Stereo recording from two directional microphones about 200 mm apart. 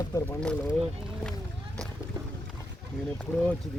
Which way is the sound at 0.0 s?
15° left (ahead or behind).